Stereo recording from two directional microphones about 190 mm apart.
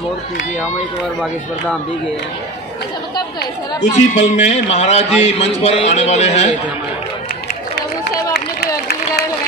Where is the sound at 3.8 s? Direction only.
40° left (ahead or behind).